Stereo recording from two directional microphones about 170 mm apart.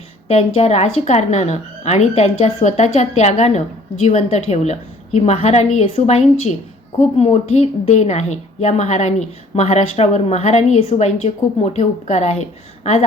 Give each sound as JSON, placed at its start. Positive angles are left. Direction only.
{"t": 0.3, "sound": "a woman's voice", "side_deg": 40}
{"t": 7.2, "sound": "a woman's voice", "side_deg": 40}